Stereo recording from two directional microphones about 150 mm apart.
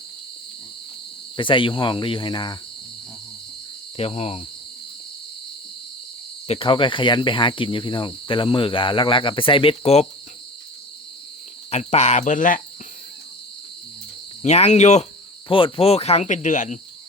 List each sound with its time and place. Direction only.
1.4 s cricket: 35° left (ahead or behind)
3.9 s speech: 40° left (ahead or behind)
6.5 s cricket: 35° left (ahead or behind)
11.7 s speech: 45° left (ahead or behind)
14.4 s speech: 50° left (ahead or behind)
15.4 s speech: 35° left (ahead or behind); by 16.7 s 55° left (ahead or behind)